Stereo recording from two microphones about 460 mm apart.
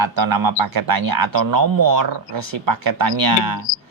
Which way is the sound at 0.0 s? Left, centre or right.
Right.